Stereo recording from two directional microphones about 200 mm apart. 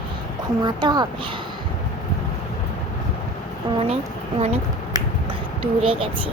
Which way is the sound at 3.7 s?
20° right (ahead or behind).